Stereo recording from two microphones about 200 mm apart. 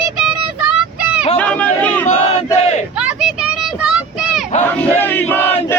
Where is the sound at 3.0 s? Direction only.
5° right (ahead or behind).